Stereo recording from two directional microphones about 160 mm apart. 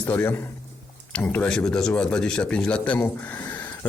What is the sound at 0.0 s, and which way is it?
Speech, 10° left (ahead or behind).